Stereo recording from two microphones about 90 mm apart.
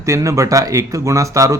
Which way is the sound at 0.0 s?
35° right (ahead or behind).